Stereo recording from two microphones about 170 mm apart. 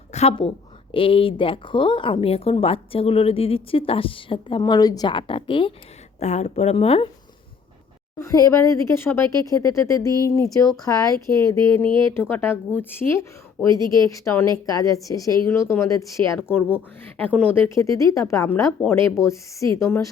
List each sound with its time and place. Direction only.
0.1 s a woman's voice: 40° left (ahead or behind)
6.1 s a woman's voice: 40° left (ahead or behind)
8.2 s a woman's voice: 20° left (ahead or behind)
11.5 s speech: 25° right (ahead or behind)
12.3 s a woman's voice: 10° left (ahead or behind)